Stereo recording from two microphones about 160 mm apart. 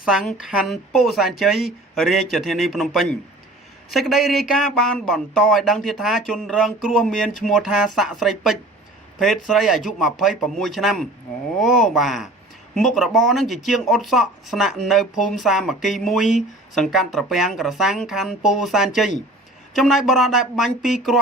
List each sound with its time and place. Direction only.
0.0 s speech: centre (ahead or behind)